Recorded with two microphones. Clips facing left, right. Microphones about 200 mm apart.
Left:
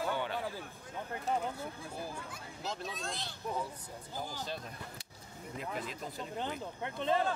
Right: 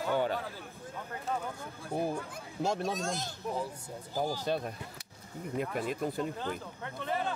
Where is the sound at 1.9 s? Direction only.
60° right (ahead or behind).